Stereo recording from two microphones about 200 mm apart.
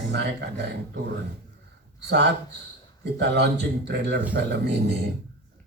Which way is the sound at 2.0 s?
60° right (ahead or behind).